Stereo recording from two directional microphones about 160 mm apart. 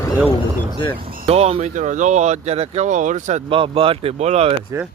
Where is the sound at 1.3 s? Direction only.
40° right (ahead or behind).